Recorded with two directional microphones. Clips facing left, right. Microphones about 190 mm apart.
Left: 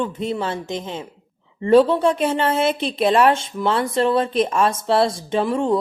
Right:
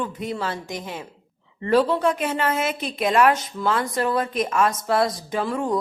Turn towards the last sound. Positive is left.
turn(degrees=25)  # may be behind; listen again after turning